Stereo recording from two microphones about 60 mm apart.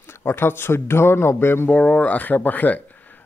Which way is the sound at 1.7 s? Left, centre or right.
Left.